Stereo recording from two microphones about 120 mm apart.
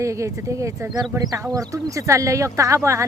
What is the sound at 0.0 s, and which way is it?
Speech, 25° right (ahead or behind).